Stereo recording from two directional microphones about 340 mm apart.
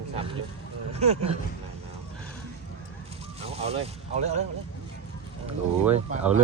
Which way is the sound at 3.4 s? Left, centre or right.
Centre.